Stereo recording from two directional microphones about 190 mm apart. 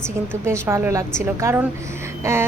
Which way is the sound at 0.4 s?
15° right (ahead or behind).